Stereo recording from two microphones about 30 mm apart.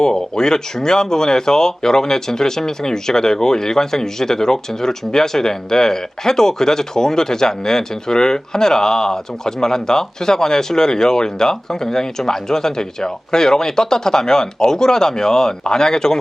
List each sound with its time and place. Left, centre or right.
0.0 s speech: left